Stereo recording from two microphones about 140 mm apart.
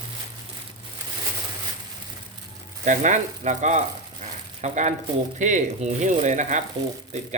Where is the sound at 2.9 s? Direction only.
60° right (ahead or behind).